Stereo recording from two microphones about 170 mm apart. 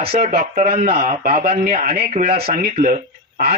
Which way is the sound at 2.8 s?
55° right (ahead or behind).